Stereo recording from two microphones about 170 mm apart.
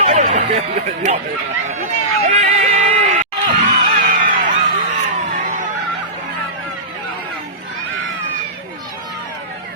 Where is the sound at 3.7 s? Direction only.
55° right (ahead or behind).